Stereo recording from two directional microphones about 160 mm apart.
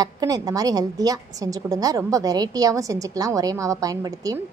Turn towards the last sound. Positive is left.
turn(degrees=-20)  # may be behind; listen again after turning